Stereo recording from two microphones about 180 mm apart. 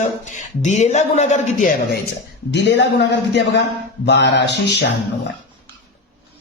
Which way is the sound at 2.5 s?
70° left (ahead or behind).